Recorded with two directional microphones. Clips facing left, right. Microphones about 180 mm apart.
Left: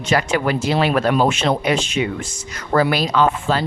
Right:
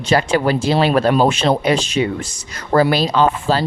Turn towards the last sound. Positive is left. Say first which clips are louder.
# right 2 dB
turn(degrees=-30)  # may be behind; listen again after turning